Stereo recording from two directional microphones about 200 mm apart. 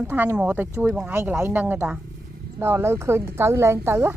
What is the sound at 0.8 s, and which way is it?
Speech, 5° right (ahead or behind).